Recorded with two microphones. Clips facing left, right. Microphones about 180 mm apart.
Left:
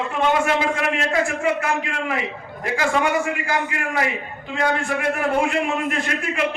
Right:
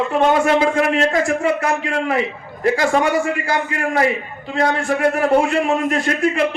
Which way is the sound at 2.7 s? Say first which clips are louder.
Right 3 dB; 40° right (ahead or behind).